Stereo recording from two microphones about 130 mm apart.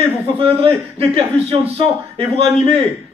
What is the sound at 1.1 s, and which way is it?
A man's voice, 50° right (ahead or behind).